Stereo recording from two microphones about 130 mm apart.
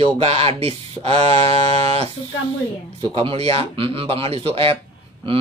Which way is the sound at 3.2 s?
50° right (ahead or behind).